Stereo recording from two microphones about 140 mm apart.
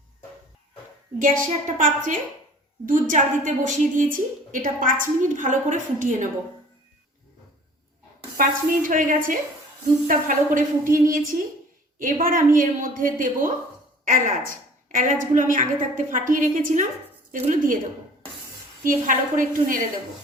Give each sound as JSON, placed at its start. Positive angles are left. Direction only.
{"t": 1.2, "sound": "a woman's voice", "side_deg": -70}
{"t": 8.4, "sound": "a woman's voice", "side_deg": -75}
{"t": 18.9, "sound": "a woman's voice", "side_deg": -75}